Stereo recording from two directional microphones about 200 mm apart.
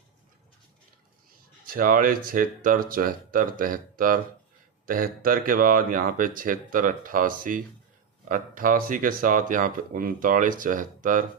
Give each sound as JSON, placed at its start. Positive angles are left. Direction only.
{"t": 1.6, "sound": "speech", "side_deg": -45}